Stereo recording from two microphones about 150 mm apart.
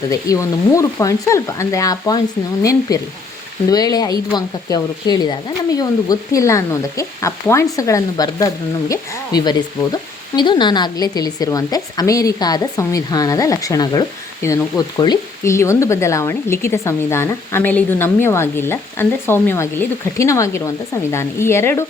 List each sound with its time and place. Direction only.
0.1 s speech: 20° left (ahead or behind)